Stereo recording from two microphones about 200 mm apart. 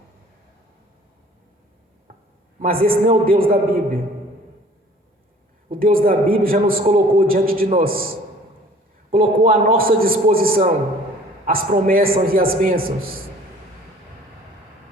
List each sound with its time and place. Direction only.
2.1 s a sound: 40° right (ahead or behind)
2.6 s a man's voice: 45° right (ahead or behind)
5.6 s a man's voice: 45° right (ahead or behind)
9.1 s a man's voice: 45° right (ahead or behind)